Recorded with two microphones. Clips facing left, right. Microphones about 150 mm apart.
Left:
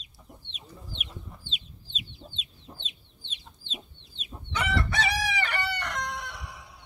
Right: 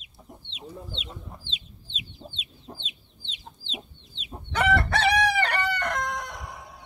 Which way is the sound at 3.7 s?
20° right (ahead or behind).